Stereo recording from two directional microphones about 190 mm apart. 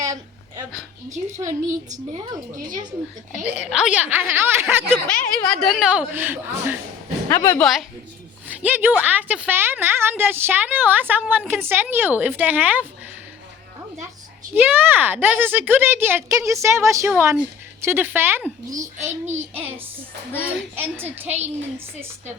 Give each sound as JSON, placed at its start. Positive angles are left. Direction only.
{"t": 1.1, "sound": "a woman's voice", "side_deg": -40}
{"t": 3.4, "sound": "a woman's voice", "side_deg": -5}
{"t": 5.0, "sound": "speech", "side_deg": 5}
{"t": 7.3, "sound": "a woman's voice", "side_deg": 15}
{"t": 7.6, "sound": "a woman's voice", "side_deg": 0}
{"t": 14.5, "sound": "a woman's voice", "side_deg": -10}
{"t": 18.8, "sound": "a woman's voice", "side_deg": -35}
{"t": 20.4, "sound": "a woman's voice", "side_deg": -10}
{"t": 21.2, "sound": "a woman's voice", "side_deg": -35}